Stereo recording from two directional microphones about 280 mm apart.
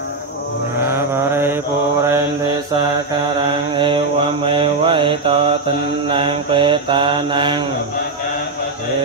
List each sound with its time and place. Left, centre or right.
0.8 s mantra: centre
3.7 s mantra: centre